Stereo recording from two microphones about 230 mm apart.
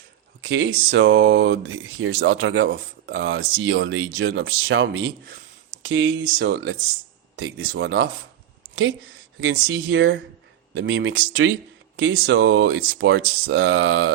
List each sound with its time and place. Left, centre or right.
0.4 s speech: right
7.3 s speech: right
9.4 s speech: right